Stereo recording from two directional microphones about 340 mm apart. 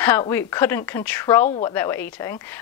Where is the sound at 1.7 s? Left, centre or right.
Centre.